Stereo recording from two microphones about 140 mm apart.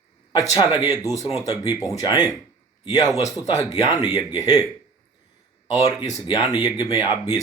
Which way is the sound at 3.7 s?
25° left (ahead or behind).